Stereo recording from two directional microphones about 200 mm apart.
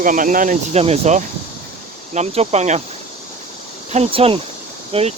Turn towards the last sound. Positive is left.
turn(degrees=-30)  # may be behind; listen again after turning